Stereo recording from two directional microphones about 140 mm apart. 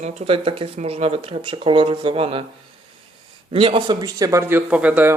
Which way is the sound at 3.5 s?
40° right (ahead or behind).